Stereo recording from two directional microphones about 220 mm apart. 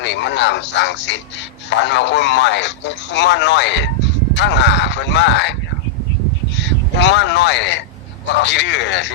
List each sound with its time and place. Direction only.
0.0 s speech: 55° left (ahead or behind)
6.6 s speech: 55° left (ahead or behind)